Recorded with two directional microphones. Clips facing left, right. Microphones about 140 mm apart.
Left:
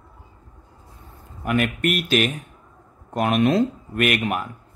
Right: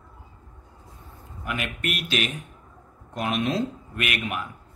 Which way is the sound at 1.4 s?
50° left (ahead or behind).